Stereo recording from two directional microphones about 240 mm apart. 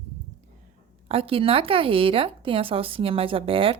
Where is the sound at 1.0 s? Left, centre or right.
Right.